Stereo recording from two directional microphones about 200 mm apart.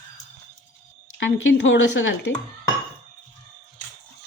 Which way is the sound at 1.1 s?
65° left (ahead or behind).